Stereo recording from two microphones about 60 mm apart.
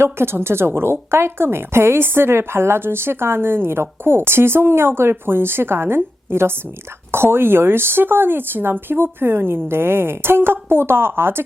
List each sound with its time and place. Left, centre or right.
0.0 s speech: right